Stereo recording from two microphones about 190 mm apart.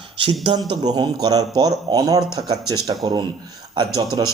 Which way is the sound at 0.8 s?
20° right (ahead or behind).